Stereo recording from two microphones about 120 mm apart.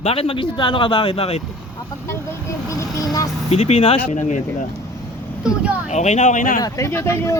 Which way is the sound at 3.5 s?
60° left (ahead or behind).